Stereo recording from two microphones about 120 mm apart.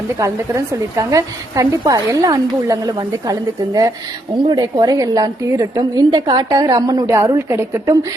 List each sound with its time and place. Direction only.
0.2 s a woman's voice: 25° right (ahead or behind)